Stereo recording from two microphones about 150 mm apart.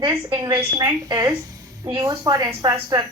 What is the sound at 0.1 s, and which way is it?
A woman's voice, 25° right (ahead or behind).